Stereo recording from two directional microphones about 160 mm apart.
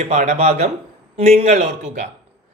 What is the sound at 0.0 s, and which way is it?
A man's voice, 45° right (ahead or behind).